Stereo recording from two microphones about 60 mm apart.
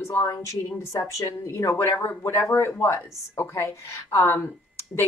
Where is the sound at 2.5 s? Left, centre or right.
Left.